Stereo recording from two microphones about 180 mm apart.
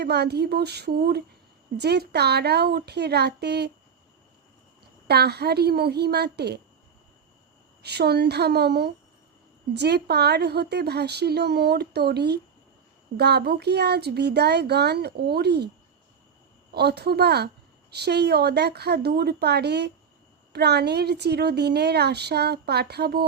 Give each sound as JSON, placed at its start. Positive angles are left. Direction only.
{"t": 0.0, "sound": "a woman's voice", "side_deg": -65}
{"t": 5.0, "sound": "a woman's voice", "side_deg": -65}
{"t": 7.8, "sound": "a woman's voice", "side_deg": -65}
{"t": 16.7, "sound": "a woman's voice", "side_deg": -65}